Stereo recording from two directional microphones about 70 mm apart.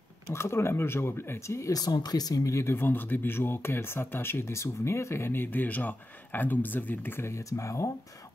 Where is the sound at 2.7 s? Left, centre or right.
Left.